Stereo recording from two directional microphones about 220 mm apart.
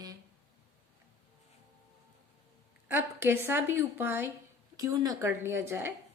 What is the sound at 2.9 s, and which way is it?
A woman's voice, 10° right (ahead or behind).